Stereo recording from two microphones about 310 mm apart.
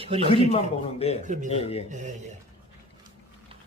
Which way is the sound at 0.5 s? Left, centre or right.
Centre.